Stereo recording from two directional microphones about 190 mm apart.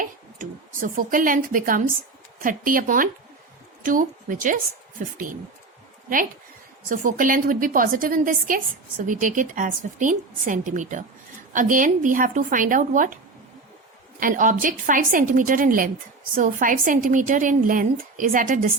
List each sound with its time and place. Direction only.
0.0 s a sound: 45° right (ahead or behind)
2.4 s a woman's voice: 45° right (ahead or behind)
6.9 s a woman's voice: 45° right (ahead or behind)
14.2 s a woman's voice: 45° right (ahead or behind)